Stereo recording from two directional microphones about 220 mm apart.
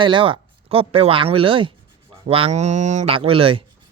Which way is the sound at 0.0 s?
20° right (ahead or behind).